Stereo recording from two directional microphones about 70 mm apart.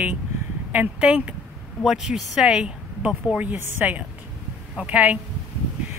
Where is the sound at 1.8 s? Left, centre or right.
Centre.